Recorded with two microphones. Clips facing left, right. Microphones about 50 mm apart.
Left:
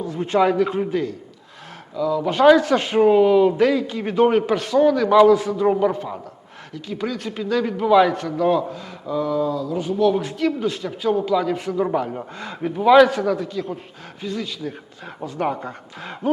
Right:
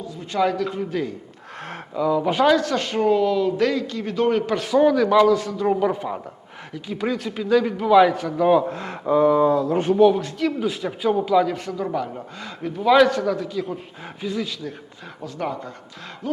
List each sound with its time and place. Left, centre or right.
0.0 s a man's voice: left
0.3 s speech: centre
2.0 s speech: centre
2.2 s speech: centre
2.5 s a man's voice: centre
4.5 s speech: centre
5.0 s a man's voice: centre
5.9 s speech: centre
8.7 s speech: right
9.1 s speech: right
10.2 s speech: centre
11.5 s a man's voice: centre
15.2 s speech: centre